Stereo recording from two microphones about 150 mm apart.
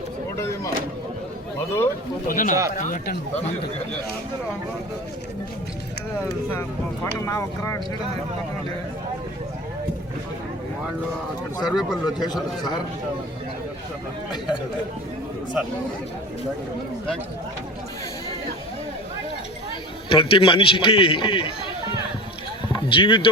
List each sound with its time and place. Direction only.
0.3 s a sound: 20° left (ahead or behind)
2.2 s speech: 65° left (ahead or behind)
6.5 s speech: 15° left (ahead or behind)
11.6 s speech: centre (ahead or behind)
12.0 s speech: 25° left (ahead or behind)
20.1 s a man's voice: 40° left (ahead or behind)
22.7 s speech: 35° left (ahead or behind)